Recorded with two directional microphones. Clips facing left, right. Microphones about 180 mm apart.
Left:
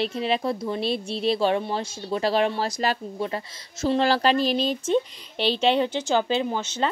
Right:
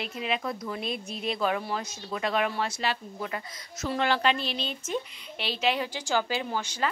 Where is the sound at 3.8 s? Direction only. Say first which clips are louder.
Left 5 dB; 30° left (ahead or behind).